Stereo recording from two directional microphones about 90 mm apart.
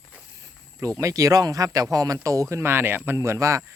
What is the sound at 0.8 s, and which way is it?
Speech, 35° right (ahead or behind).